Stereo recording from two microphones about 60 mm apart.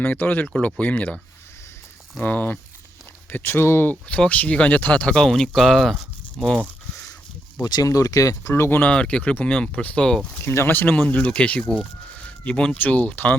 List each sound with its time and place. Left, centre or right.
0.0 s speech: left
2.2 s speech: left
4.3 s speech: left
7.8 s speech: left
8.5 s speech: left
8.8 s speech: centre
10.4 s speech: left
10.7 s speech: left
10.9 s speech: left
12.1 s a sound: centre
12.7 s speech: left